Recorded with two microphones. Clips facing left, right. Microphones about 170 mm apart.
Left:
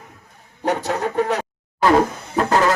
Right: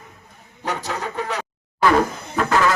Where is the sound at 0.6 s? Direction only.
55° left (ahead or behind).